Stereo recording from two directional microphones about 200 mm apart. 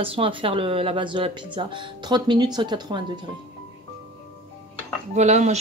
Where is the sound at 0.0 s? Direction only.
25° right (ahead or behind).